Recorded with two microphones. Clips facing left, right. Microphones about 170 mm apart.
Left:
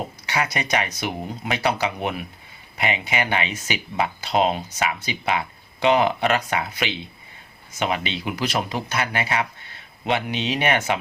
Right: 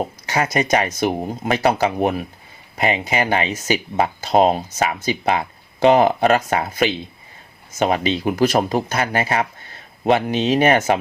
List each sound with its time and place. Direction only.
0.3 s speech: 45° right (ahead or behind)